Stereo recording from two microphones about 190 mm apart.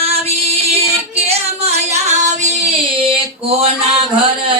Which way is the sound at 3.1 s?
30° right (ahead or behind).